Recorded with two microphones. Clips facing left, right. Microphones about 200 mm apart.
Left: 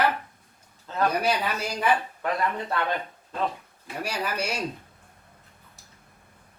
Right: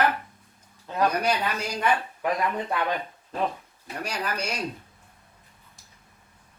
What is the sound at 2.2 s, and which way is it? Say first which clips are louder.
Speech: right 1 dB; 10° right (ahead or behind).